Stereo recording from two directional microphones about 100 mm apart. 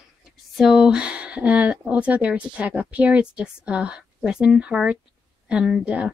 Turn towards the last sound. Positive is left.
turn(degrees=-10)  # may be behind; listen again after turning